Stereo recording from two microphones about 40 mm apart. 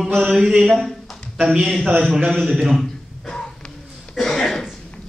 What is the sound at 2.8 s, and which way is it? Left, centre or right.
Beatboxing, centre.